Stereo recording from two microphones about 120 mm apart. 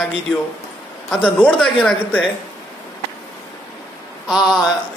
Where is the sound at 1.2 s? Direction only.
10° left (ahead or behind).